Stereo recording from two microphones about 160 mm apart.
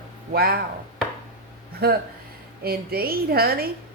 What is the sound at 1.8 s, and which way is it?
Speech, 80° right.